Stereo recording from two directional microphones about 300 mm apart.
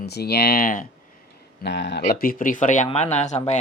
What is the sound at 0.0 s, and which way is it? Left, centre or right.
Speech, left.